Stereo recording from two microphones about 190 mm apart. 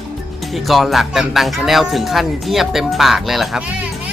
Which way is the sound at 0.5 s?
Centre (ahead or behind).